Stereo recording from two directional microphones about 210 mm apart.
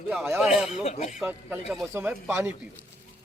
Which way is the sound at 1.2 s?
10° right (ahead or behind).